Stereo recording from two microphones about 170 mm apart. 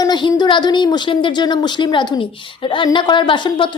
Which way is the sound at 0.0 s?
25° left (ahead or behind).